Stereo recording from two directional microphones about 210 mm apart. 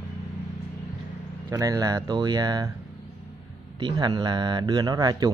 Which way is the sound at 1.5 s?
15° right (ahead or behind).